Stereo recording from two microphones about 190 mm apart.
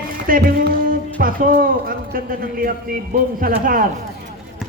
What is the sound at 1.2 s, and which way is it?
A man's voice, 50° right (ahead or behind).